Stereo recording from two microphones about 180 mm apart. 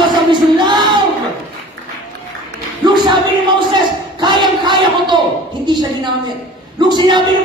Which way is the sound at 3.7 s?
25° right (ahead or behind).